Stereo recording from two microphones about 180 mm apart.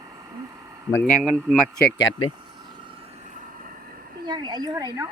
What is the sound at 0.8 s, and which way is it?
Speech, 15° left (ahead or behind).